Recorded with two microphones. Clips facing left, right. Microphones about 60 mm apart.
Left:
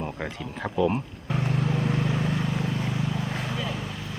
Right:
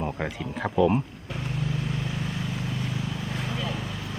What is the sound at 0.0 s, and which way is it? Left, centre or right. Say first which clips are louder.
Speech: right 2 dB; centre.